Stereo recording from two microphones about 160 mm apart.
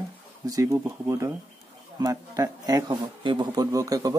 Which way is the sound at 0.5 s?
20° right (ahead or behind).